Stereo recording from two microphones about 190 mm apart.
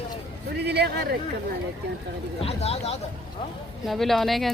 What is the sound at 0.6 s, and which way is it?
Speech, 60° right (ahead or behind).